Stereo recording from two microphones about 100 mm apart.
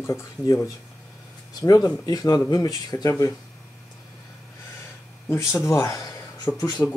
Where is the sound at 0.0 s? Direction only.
25° left (ahead or behind).